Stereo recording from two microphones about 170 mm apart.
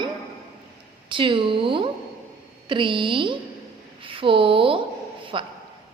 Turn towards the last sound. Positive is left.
turn(degrees=-30)  # may be behind; listen again after turning